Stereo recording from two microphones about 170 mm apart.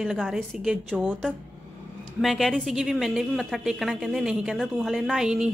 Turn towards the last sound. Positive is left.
turn(degrees=-5)  # may be behind; listen again after turning